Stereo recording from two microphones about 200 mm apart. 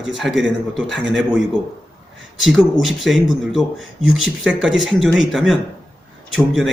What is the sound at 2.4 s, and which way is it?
Speech, centre (ahead or behind).